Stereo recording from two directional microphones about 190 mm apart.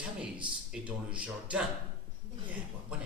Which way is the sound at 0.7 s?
5° right (ahead or behind).